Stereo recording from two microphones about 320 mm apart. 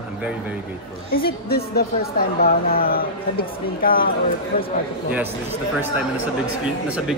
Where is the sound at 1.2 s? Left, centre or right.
Left.